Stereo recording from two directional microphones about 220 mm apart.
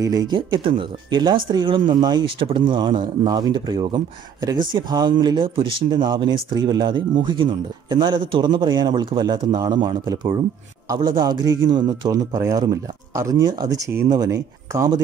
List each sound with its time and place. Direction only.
0.5 s speech: 20° right (ahead or behind)